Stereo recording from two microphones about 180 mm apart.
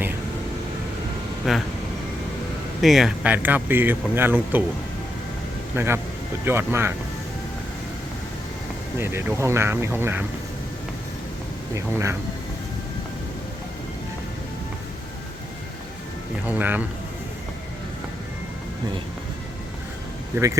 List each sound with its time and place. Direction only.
1.5 s speech: centre (ahead or behind)
2.8 s speech: centre (ahead or behind)
5.7 s speech: 15° right (ahead or behind)
9.0 s speech: 15° right (ahead or behind)
16.5 s speech: 10° right (ahead or behind)
20.3 s speech: 15° right (ahead or behind)